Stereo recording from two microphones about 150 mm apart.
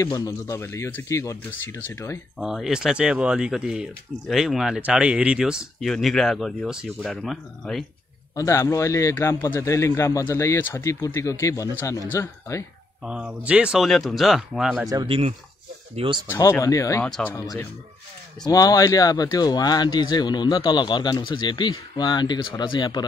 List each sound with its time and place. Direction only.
0.0 s speech: 25° left (ahead or behind)
2.3 s speech: centre (ahead or behind)
8.4 s speech: 20° left (ahead or behind)
13.0 s speech: 5° right (ahead or behind)
15.0 s speech: 40° right (ahead or behind)
16.0 s speech: 30° right (ahead or behind)
16.3 s speech: 20° left (ahead or behind)
17.0 s speech: 10° left (ahead or behind)
17.4 s speech: 25° left (ahead or behind)